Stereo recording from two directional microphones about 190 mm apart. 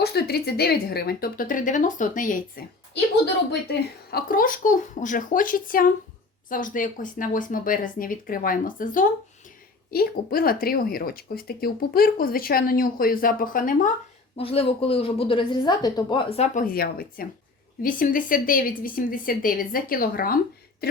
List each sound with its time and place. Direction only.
0.0 s speech: 55° left (ahead or behind)
3.5 s speech: 55° left (ahead or behind)
14.3 s a woman's voice: 30° left (ahead or behind)
16.6 s speech: 50° left (ahead or behind)